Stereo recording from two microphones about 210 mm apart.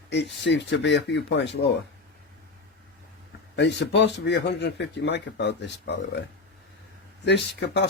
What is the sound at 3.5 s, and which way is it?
A man's voice, 55° left (ahead or behind).